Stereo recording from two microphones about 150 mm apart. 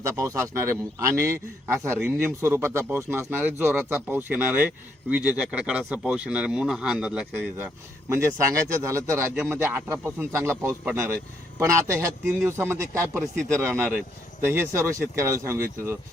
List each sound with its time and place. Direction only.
0.0 s speech: 20° right (ahead or behind)
8.4 s speech: 20° right (ahead or behind)